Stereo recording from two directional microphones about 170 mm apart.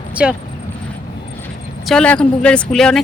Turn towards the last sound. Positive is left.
turn(degrees=5)  # may be behind; listen again after turning